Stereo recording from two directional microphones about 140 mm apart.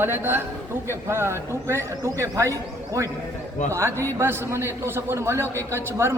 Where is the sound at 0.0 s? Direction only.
15° right (ahead or behind).